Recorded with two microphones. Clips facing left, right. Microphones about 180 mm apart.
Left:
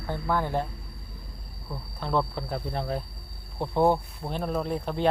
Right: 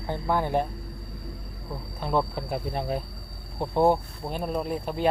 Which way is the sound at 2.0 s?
15° right (ahead or behind).